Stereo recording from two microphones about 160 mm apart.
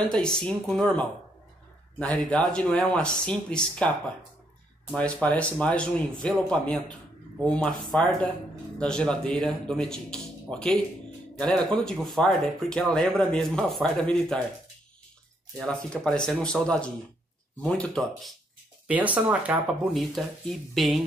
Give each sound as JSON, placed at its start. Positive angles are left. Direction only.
{"t": 0.0, "sound": "speech", "side_deg": 5}
{"t": 4.9, "sound": "speech", "side_deg": 10}
{"t": 15.5, "sound": "speech", "side_deg": 5}
{"t": 18.9, "sound": "speech", "side_deg": -10}